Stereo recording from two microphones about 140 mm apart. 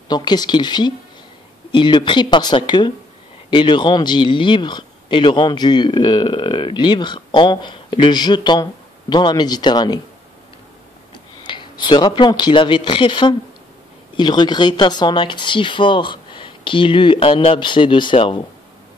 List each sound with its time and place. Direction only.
0.1 s speech: 30° left (ahead or behind)
11.4 s speech: 35° left (ahead or behind)